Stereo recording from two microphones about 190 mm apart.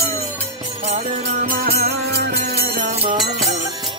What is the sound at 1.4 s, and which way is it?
Music, 50° right (ahead or behind).